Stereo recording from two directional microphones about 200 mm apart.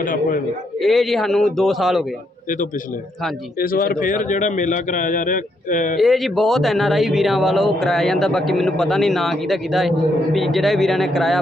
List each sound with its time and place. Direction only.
0.0 s a man's voice: 40° left (ahead or behind)
0.8 s speech: centre (ahead or behind)
3.6 s a man's voice: 45° left (ahead or behind)
6.0 s speech: centre (ahead or behind)